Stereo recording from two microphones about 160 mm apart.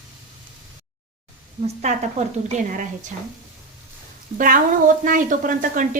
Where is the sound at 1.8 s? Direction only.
45° right (ahead or behind).